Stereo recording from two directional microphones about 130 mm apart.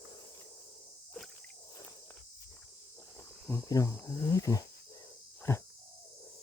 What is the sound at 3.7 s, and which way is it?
Speech, 25° left (ahead or behind).